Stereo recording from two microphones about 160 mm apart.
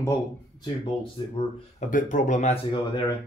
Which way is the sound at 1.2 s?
30° left (ahead or behind).